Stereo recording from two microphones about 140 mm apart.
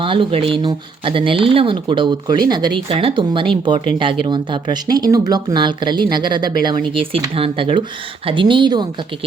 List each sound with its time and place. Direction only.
0.0 s speech: 40° right (ahead or behind)